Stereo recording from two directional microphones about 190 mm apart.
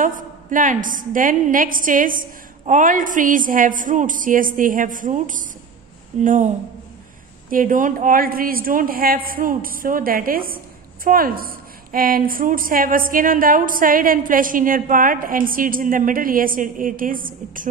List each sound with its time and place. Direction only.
0.0 s a woman's voice: 45° right (ahead or behind)